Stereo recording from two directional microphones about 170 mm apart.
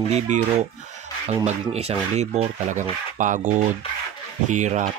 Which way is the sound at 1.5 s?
40° right (ahead or behind).